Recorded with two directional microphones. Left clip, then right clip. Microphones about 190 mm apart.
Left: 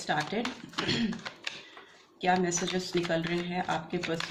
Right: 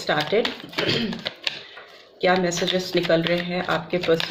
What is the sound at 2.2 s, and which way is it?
A woman's voice, 35° right (ahead or behind).